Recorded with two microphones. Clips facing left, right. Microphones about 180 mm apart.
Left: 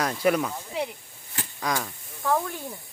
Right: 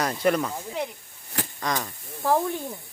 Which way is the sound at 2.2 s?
25° right (ahead or behind).